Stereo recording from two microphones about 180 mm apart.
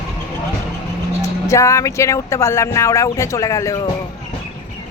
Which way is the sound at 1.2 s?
15° left (ahead or behind).